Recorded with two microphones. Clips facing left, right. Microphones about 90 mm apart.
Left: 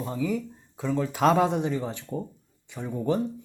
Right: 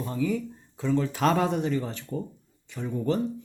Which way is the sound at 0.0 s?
15° left (ahead or behind).